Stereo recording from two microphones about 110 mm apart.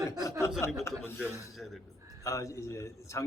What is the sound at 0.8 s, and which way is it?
Speech, 20° left (ahead or behind).